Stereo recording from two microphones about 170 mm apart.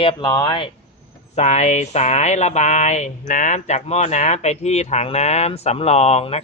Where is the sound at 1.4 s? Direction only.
40° left (ahead or behind).